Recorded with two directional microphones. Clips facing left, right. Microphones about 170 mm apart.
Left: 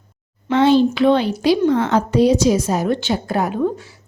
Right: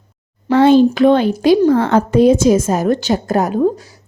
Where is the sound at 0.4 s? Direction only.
45° right (ahead or behind).